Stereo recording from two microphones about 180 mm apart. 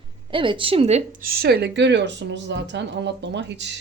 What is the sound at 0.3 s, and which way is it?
Speech, 30° right (ahead or behind).